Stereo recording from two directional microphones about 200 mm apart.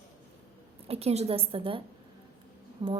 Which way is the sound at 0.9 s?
30° right (ahead or behind).